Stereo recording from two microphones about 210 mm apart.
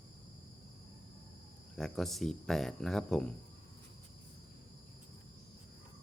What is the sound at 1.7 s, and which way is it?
Speech, centre (ahead or behind).